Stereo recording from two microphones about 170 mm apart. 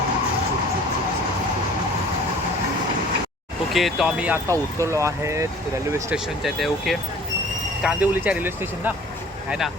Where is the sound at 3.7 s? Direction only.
Centre (ahead or behind).